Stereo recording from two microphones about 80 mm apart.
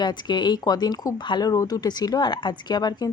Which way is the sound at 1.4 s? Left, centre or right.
Left.